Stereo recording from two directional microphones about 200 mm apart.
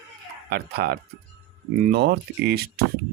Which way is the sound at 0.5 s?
50° right (ahead or behind).